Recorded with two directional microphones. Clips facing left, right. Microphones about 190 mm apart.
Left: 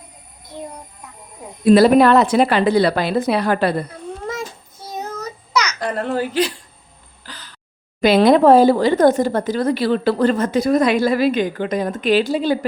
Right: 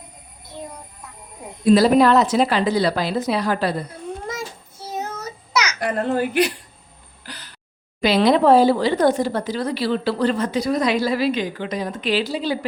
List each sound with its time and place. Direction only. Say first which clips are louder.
1.6 s a woman's voice: left 3 dB; 60° left (ahead or behind)
4.4 s child singing: left 2 dB; 5° right (ahead or behind)
5.8 s a child's voice: even; 20° right (ahead or behind)
7.3 s a sound: even; 15° right (ahead or behind)
8.0 s speech: left 4 dB; 50° left (ahead or behind)